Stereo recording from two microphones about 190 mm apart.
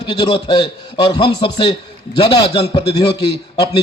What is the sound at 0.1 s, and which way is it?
Speech, 25° left (ahead or behind).